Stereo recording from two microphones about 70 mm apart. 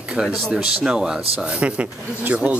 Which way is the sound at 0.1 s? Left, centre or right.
Centre.